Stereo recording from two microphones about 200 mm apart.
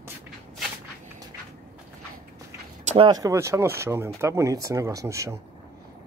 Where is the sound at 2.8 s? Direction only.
25° right (ahead or behind).